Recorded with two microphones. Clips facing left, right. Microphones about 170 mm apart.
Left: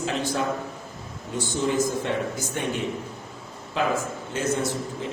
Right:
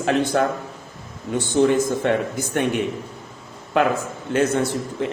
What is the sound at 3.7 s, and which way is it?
Speech, 65° right (ahead or behind).